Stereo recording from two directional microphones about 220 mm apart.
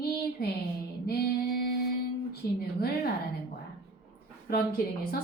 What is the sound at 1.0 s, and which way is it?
Speech, 45° left (ahead or behind).